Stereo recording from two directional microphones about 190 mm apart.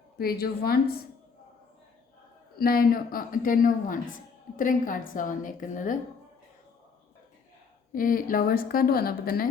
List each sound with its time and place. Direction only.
0.2 s a woman's voice: 55° left (ahead or behind)
2.6 s a woman's voice: 50° left (ahead or behind)
7.9 s a woman's voice: 45° left (ahead or behind)